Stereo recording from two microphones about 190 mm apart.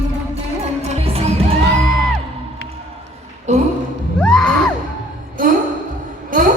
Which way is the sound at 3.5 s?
40° right (ahead or behind).